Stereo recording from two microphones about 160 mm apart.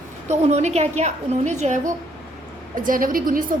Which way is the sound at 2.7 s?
60° right (ahead or behind).